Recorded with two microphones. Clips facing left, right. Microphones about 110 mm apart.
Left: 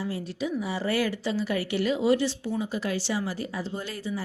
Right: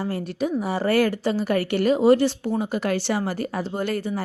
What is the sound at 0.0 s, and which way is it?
A woman's voice, 50° right (ahead or behind).